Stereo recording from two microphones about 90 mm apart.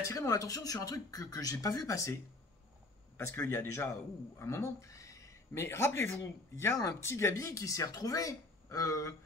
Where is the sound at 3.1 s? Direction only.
30° left (ahead or behind).